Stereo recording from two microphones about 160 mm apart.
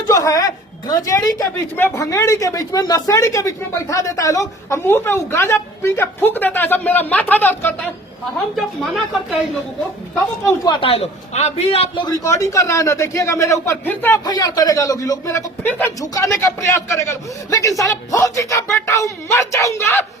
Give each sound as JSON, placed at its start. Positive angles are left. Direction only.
{"t": 0.1, "sound": "a woman's voice", "side_deg": 20}
{"t": 8.5, "sound": "speech", "side_deg": 0}
{"t": 10.4, "sound": "a man's voice", "side_deg": 25}
{"t": 12.0, "sound": "a woman's voice", "side_deg": 20}
{"t": 14.3, "sound": "a woman's voice", "side_deg": 25}